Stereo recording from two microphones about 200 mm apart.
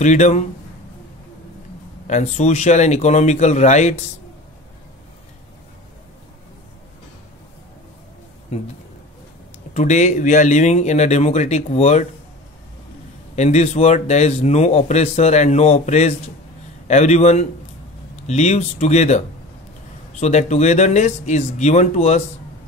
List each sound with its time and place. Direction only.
0.0 s speech: 35° left (ahead or behind)
2.0 s speech: 35° left (ahead or behind)
8.5 s speech: 30° left (ahead or behind)
9.8 s speech: 35° left (ahead or behind)
13.4 s speech: 35° left (ahead or behind)